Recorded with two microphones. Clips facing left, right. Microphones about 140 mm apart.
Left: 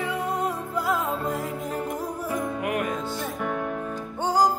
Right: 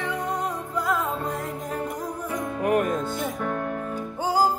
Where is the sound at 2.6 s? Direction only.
35° right (ahead or behind).